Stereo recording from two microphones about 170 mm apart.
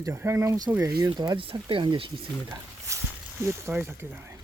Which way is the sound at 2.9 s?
20° right (ahead or behind).